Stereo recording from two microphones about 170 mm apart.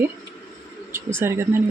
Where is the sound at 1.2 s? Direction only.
15° right (ahead or behind).